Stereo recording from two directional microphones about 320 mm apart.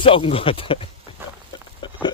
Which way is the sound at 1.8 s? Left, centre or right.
Centre.